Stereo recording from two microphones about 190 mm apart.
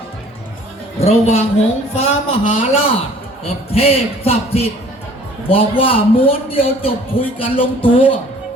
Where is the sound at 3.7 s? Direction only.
30° left (ahead or behind).